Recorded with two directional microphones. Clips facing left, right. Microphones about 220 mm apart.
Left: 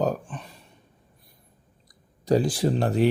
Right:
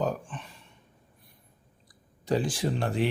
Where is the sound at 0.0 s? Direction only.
40° left (ahead or behind).